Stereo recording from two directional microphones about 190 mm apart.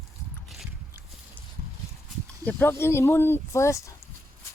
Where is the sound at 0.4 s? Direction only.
Centre (ahead or behind).